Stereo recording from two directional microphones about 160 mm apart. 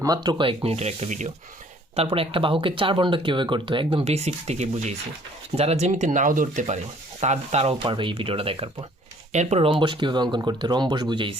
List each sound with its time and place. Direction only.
0.0 s speech: 25° right (ahead or behind); by 1.3 s 45° right (ahead or behind)
2.0 s speech: 35° right (ahead or behind)